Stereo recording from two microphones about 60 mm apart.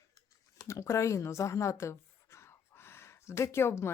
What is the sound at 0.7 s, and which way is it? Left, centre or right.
Speech, left.